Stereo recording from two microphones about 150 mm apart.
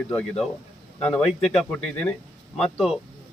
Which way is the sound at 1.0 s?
5° left (ahead or behind).